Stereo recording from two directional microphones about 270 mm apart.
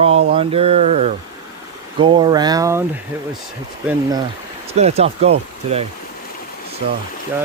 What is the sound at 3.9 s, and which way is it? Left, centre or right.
Speech, centre.